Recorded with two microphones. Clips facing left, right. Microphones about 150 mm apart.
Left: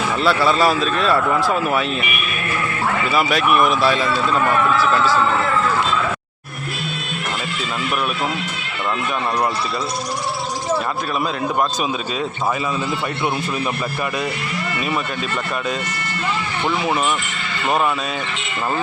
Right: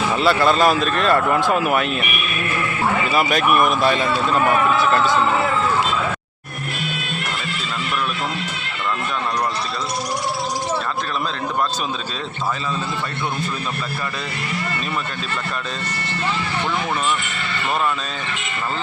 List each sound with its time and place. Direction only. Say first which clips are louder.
0.2 s a man's voice: even; centre (ahead or behind)
1.5 s speech: right 1 dB; 10° right (ahead or behind)
3.1 s a man's voice: left 2 dB; centre (ahead or behind)
4.8 s music: even; 20° right (ahead or behind)